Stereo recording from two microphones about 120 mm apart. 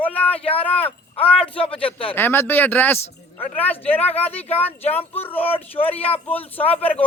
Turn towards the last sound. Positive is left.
turn(degrees=55)  # may be behind; listen again after turning